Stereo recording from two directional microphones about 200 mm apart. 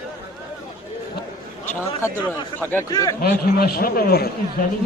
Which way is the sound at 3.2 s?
50° left (ahead or behind).